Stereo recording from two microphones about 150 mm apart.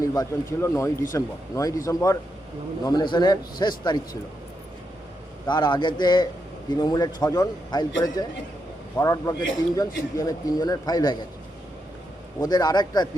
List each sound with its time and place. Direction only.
0.0 s a man's voice: 20° left (ahead or behind)
5.5 s a man's voice: 30° left (ahead or behind)
12.4 s a man's voice: 25° left (ahead or behind)